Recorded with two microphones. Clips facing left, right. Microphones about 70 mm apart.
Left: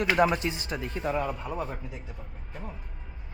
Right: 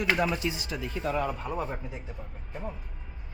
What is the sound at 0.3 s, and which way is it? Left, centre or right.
Speech, left.